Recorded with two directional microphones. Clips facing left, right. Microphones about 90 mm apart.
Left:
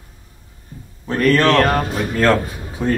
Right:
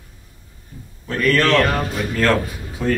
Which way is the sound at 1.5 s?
40° left (ahead or behind).